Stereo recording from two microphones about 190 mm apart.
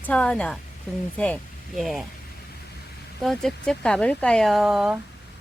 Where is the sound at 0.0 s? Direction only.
5° left (ahead or behind).